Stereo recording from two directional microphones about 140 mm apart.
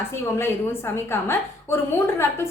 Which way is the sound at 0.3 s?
15° left (ahead or behind).